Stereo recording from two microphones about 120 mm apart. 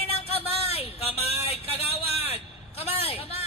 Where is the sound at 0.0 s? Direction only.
55° left (ahead or behind).